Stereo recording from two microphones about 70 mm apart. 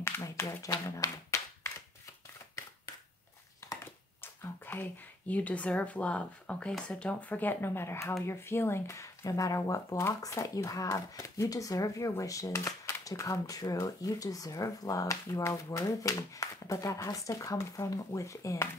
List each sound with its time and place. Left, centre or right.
0.0 s speech: left
0.8 s clapping: left
3.8 s a sound: left
5.3 s speech: centre; by 9.9 s left
9.9 s speech: left
12.5 s speech: left